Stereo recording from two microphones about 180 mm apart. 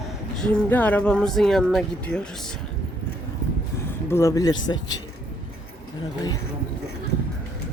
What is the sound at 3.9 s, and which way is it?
Speech, 15° left (ahead or behind).